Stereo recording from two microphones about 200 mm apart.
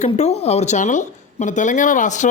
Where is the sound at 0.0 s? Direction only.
35° left (ahead or behind).